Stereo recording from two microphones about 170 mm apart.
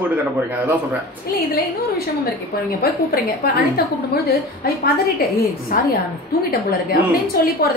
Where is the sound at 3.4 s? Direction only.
65° left (ahead or behind).